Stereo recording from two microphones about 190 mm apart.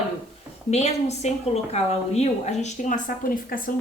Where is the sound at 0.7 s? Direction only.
35° left (ahead or behind).